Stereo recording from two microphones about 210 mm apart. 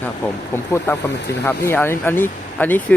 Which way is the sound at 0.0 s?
10° left (ahead or behind).